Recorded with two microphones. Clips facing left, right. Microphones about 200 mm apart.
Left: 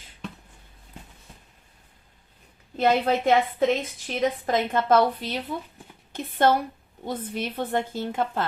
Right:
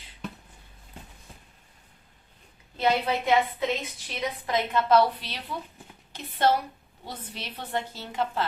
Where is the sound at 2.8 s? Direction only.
50° left (ahead or behind).